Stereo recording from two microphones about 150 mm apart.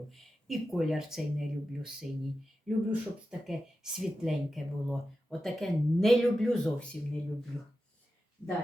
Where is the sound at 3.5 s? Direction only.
5° right (ahead or behind).